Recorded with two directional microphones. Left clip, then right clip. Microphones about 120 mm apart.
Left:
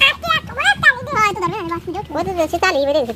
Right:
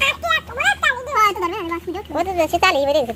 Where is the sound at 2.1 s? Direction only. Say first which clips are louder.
Right 1 dB; 55° left (ahead or behind).